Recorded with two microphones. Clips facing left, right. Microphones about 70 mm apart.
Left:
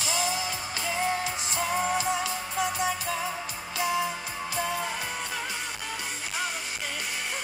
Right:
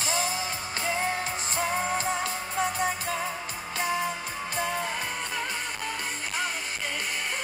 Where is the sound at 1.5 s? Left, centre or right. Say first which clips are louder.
Left 1 dB; right.